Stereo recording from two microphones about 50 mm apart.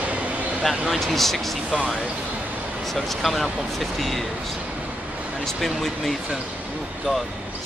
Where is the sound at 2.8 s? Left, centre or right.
Centre.